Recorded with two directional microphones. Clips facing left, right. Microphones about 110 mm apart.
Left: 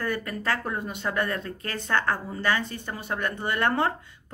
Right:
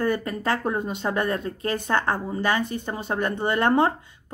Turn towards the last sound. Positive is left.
turn(degrees=-20)  # may be behind; listen again after turning